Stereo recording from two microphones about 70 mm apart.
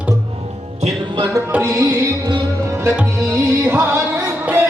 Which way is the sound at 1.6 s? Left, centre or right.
Right.